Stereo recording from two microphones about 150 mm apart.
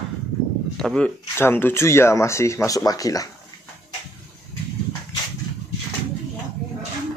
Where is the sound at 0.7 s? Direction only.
5° left (ahead or behind); by 3.2 s 25° left (ahead or behind).